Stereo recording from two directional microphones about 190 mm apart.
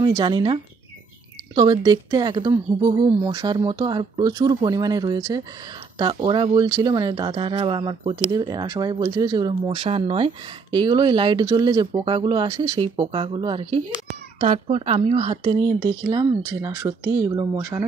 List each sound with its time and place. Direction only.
0.0 s speech: 25° right (ahead or behind)